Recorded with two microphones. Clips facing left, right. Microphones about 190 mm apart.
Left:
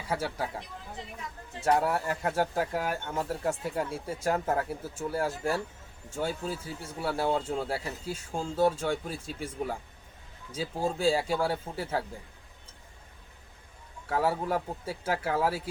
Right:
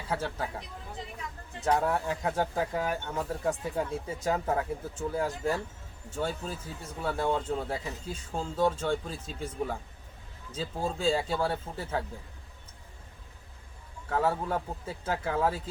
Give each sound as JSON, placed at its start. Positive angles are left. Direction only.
{"t": 0.1, "sound": "speech", "side_deg": 10}
{"t": 1.6, "sound": "speech", "side_deg": 10}
{"t": 14.1, "sound": "speech", "side_deg": 10}